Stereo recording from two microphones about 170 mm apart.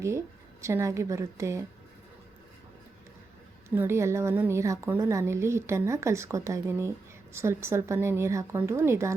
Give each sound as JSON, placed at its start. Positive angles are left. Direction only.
{"t": 0.6, "sound": "a woman's voice", "side_deg": -15}
{"t": 3.8, "sound": "a woman's voice", "side_deg": -15}